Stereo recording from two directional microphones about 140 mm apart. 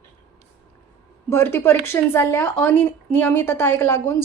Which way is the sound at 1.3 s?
15° left (ahead or behind).